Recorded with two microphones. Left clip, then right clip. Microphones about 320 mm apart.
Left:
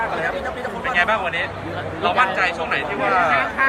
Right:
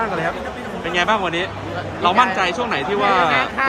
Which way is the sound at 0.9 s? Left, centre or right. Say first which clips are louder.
Right 1 dB; centre.